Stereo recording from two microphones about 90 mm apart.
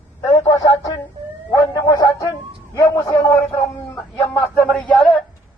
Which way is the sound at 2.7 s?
35° left (ahead or behind).